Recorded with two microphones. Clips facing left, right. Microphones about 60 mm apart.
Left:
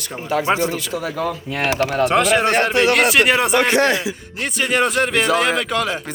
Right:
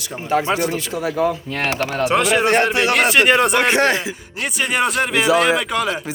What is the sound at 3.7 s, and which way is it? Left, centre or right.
Speech, right.